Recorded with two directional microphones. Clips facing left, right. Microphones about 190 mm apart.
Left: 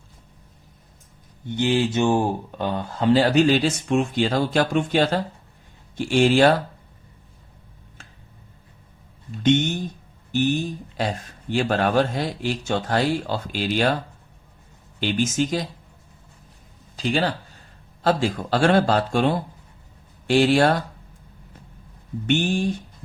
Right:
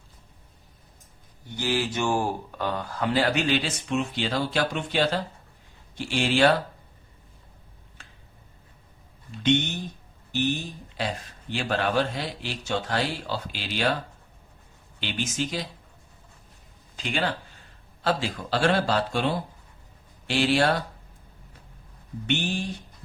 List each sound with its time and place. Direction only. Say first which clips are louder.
1.5 s a man's voice: left 6 dB; 25° left (ahead or behind); by 6.6 s 45° left (ahead or behind)
10.9 s a man's voice: left 3 dB; 45° left (ahead or behind)
15.0 s a man's voice: left 8 dB; 45° left (ahead or behind)
17.0 s a man's voice: left 5 dB; 35° left (ahead or behind)
22.3 s a man's voice: left 6 dB; 50° left (ahead or behind)